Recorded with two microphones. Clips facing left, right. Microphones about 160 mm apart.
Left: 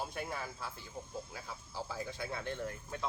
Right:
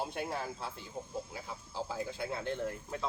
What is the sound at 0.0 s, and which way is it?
Speech, 30° right (ahead or behind).